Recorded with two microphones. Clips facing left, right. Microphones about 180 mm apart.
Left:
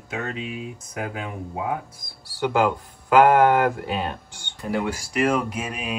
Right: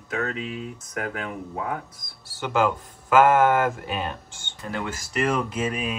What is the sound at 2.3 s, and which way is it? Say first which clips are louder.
Speech: left 2 dB; 15° left (ahead or behind).